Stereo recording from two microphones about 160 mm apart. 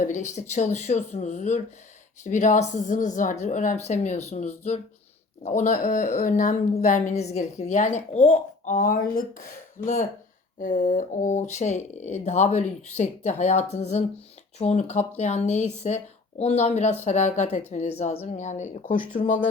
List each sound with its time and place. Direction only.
0.0 s speech: 50° left (ahead or behind)